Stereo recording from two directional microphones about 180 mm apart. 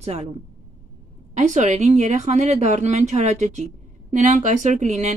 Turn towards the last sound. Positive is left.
turn(degrees=-40)  # may be behind; listen again after turning